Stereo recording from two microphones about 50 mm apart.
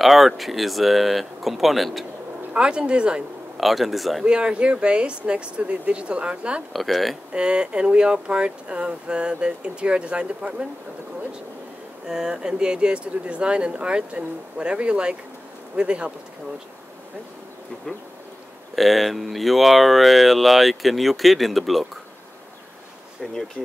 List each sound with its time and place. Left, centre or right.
0.0 s speech: centre
2.5 s speech: centre
3.5 s speech: centre
4.2 s speech: centre
6.7 s speech: centre
7.3 s speech: centre
12.1 s speech: centre
18.8 s speech: centre
23.2 s speech: centre